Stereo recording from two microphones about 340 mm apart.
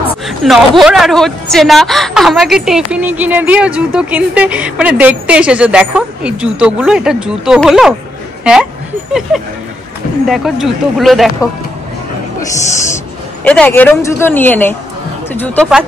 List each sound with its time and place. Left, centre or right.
0.4 s speech: centre
10.2 s speech: centre
12.4 s speech: centre
12.9 s speech: centre